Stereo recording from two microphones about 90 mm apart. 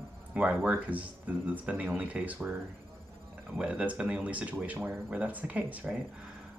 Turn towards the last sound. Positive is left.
turn(degrees=-15)  # may be behind; listen again after turning